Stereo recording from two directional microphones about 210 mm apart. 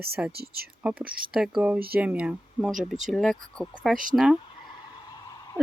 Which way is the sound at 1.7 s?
45° right (ahead or behind).